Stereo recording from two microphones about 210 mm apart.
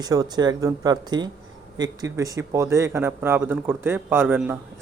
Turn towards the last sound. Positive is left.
turn(degrees=-10)  # may be behind; listen again after turning